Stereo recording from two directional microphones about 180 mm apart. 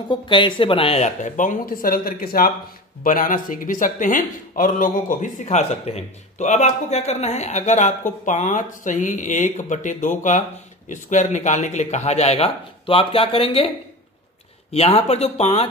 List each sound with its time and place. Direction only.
0.1 s a man's voice: 25° left (ahead or behind)
14.7 s speech: 35° left (ahead or behind)